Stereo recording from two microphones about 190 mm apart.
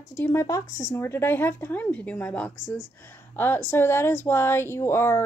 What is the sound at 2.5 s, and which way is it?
Speech, 70° right (ahead or behind).